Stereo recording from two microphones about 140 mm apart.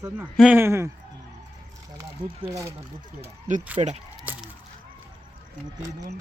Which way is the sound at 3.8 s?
55° right (ahead or behind).